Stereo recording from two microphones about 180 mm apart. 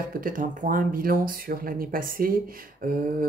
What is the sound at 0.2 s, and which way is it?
Speech, 50° right (ahead or behind).